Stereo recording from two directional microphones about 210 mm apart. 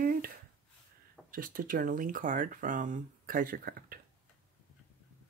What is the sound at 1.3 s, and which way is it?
Speech, 40° right (ahead or behind).